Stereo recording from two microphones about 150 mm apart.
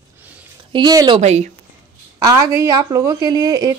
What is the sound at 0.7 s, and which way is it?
Speech, 30° right (ahead or behind).